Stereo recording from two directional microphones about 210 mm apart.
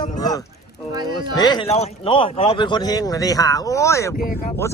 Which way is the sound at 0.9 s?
20° right (ahead or behind).